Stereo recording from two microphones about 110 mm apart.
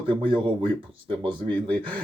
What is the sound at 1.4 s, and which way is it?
Speech, 15° left (ahead or behind).